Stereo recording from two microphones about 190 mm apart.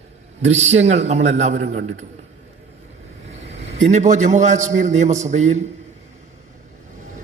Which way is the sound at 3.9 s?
40° right (ahead or behind).